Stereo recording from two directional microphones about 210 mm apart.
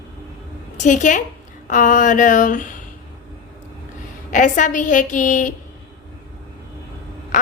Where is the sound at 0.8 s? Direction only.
35° left (ahead or behind).